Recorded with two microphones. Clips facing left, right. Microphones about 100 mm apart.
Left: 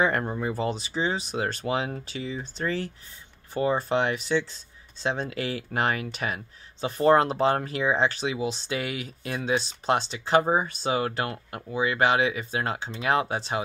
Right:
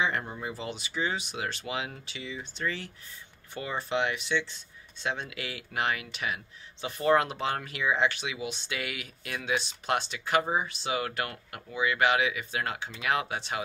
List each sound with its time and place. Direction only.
0.0 s speech: 50° left (ahead or behind); by 10.5 s 30° left (ahead or behind)
10.5 s speech: 40° left (ahead or behind)